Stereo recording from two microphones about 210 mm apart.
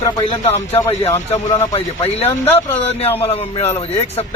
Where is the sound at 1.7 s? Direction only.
30° left (ahead or behind).